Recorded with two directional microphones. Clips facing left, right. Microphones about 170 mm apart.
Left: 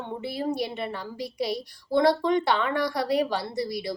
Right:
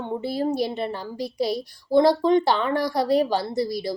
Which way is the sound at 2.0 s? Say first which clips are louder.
Right 4 dB; 30° right (ahead or behind).